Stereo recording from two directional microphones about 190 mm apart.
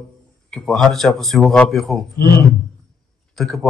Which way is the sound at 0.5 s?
Centre (ahead or behind).